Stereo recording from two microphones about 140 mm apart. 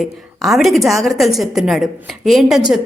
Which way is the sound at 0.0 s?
Centre (ahead or behind).